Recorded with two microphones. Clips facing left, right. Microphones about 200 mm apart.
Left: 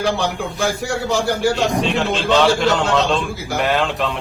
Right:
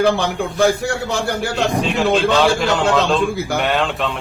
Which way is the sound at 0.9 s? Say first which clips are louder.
Left 1 dB; 60° right (ahead or behind).